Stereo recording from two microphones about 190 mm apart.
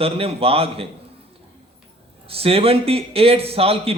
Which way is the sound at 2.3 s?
30° right (ahead or behind).